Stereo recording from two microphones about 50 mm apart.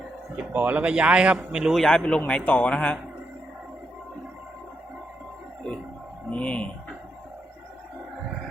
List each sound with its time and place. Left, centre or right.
0.5 s speech: right
0.8 s a man's voice: right
1.7 s a man's voice: centre
2.0 s speech: left
6.3 s speech: left